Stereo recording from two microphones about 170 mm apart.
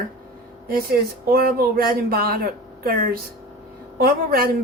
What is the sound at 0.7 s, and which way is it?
A woman's voice, 60° right (ahead or behind).